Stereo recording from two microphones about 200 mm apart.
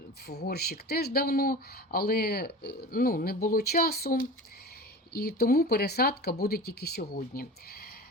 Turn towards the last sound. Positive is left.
turn(degrees=50)  # may be behind; listen again after turning